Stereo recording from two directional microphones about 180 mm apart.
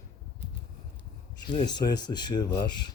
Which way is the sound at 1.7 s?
25° left (ahead or behind).